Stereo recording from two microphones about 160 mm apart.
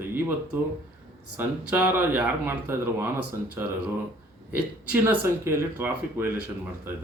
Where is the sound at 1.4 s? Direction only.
10° right (ahead or behind).